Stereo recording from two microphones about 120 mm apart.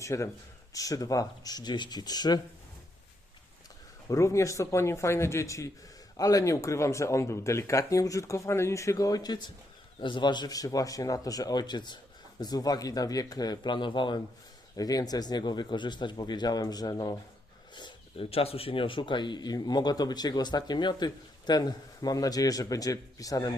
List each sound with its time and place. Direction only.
0.0 s speech: 25° left (ahead or behind)
4.1 s speech: 25° left (ahead or behind); by 14.2 s 40° left (ahead or behind)
14.8 s speech: 30° left (ahead or behind)
17.7 s a sound: 40° left (ahead or behind)
18.3 s speech: 55° left (ahead or behind); by 23.6 s 30° left (ahead or behind)